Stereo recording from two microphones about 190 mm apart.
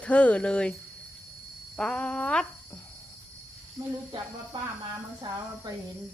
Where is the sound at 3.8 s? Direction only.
20° right (ahead or behind).